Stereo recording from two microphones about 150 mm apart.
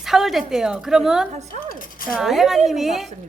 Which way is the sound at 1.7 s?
65° left (ahead or behind).